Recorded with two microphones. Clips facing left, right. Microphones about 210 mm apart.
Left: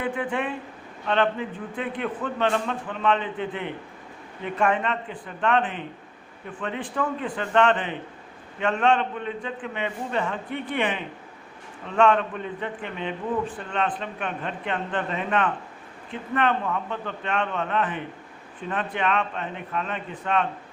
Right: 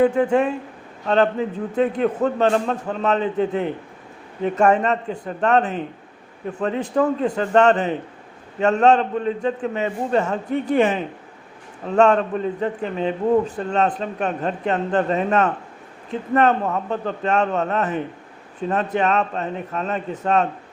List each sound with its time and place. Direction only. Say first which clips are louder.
0.0 s a man's voice: right 11 dB; 40° right (ahead or behind)